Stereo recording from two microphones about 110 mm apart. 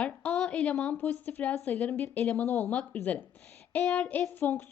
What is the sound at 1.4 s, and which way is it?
A woman's voice, 5° left (ahead or behind).